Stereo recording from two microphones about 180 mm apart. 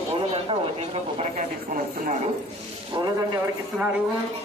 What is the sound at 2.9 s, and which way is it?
Speech, 25° right (ahead or behind).